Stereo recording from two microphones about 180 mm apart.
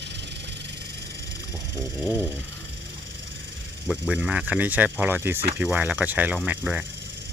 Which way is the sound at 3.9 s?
5° right (ahead or behind).